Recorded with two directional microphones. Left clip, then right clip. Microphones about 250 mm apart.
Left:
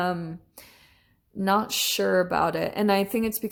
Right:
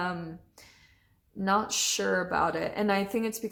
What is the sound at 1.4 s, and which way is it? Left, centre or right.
Speech, left.